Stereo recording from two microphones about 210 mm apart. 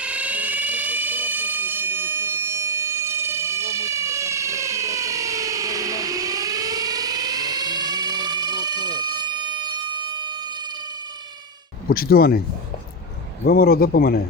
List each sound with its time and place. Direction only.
0.0 s fire alarm: 5° right (ahead or behind)
11.9 s a man's voice: 45° left (ahead or behind)
13.5 s a man's voice: 45° left (ahead or behind)